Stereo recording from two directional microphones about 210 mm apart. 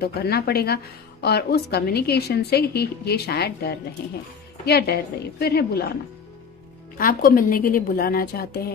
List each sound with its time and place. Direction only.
0.0 s a woman's voice: 50° left (ahead or behind)
7.0 s a woman's voice: 45° left (ahead or behind)